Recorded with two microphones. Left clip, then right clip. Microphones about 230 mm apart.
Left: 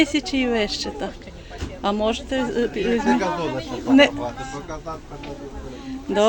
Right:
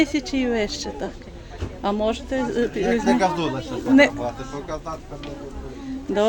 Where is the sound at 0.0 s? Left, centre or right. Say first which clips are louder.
Left 1 dB; centre.